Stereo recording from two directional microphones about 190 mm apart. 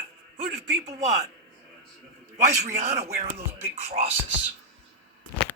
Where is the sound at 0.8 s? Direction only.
35° right (ahead or behind).